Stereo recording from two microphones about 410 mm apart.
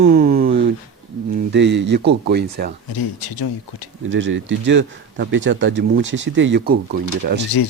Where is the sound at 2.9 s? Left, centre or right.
Left.